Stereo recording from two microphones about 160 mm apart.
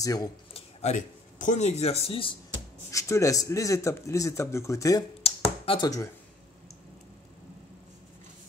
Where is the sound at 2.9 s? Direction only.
20° left (ahead or behind).